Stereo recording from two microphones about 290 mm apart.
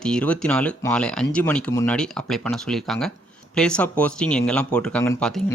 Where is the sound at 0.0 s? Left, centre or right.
Centre.